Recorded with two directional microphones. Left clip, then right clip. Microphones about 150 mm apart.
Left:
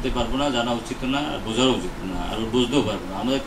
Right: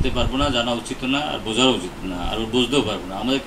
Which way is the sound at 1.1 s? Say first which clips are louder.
Right 3 dB; 55° right (ahead or behind).